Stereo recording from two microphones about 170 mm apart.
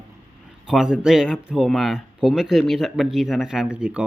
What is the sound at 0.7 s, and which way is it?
Speech, 5° right (ahead or behind).